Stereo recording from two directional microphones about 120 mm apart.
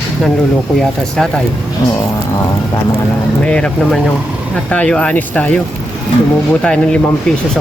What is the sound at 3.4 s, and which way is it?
Speech, 10° left (ahead or behind).